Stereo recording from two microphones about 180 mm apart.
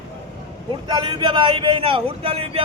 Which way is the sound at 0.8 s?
25° right (ahead or behind).